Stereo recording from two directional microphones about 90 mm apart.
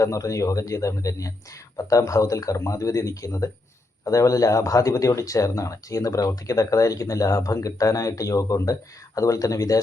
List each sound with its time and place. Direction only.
0.0 s speech: 35° left (ahead or behind)